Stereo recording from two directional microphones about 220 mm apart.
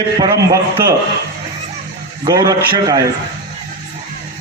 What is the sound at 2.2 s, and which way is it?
Speech, 15° right (ahead or behind).